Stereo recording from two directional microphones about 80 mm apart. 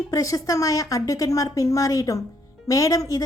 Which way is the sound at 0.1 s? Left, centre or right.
Left.